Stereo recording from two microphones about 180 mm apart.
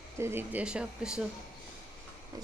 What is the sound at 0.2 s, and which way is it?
Speech, 15° right (ahead or behind).